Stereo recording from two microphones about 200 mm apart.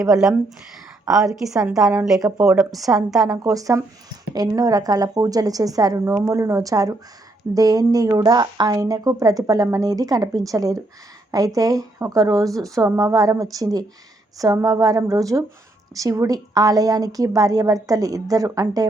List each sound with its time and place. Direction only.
0.0 s a woman's voice: centre (ahead or behind)
3.2 s speech: 15° right (ahead or behind)